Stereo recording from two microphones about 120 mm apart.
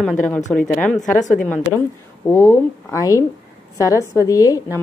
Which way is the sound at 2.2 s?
25° left (ahead or behind).